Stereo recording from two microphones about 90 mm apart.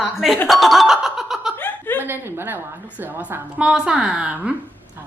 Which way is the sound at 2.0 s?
25° right (ahead or behind).